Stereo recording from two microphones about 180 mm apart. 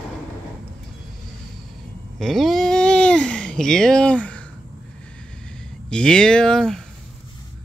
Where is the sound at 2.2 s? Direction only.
Centre (ahead or behind).